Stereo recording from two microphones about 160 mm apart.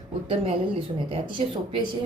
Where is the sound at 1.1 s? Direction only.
30° right (ahead or behind).